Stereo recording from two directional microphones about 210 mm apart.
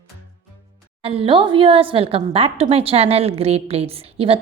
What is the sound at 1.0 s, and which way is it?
A woman's voice, 25° right (ahead or behind).